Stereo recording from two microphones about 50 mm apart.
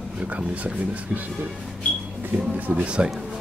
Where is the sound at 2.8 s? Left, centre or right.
Centre.